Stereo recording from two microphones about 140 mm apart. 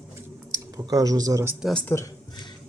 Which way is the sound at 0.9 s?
25° right (ahead or behind).